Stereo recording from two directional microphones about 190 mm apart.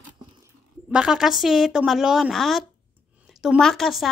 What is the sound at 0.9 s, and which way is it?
Speech, 5° right (ahead or behind).